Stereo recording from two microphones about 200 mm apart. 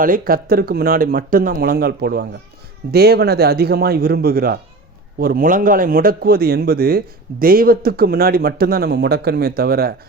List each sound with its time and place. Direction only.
0.0 s speech: 45° right (ahead or behind)